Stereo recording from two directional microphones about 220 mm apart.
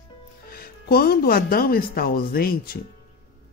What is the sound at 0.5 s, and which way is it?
Speech, 45° left (ahead or behind).